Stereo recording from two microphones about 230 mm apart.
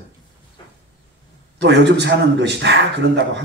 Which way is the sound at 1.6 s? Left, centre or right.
Right.